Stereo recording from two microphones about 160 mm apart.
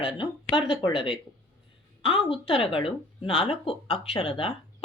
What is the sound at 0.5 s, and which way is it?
A woman's voice, 30° left (ahead or behind).